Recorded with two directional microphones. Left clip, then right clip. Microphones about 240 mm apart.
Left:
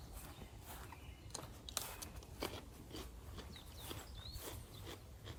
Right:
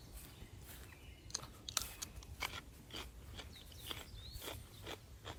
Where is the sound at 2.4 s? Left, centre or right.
Centre.